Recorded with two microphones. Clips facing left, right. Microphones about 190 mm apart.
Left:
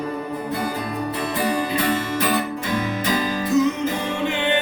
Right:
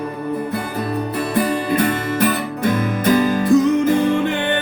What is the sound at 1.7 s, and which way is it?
Music, 50° right (ahead or behind).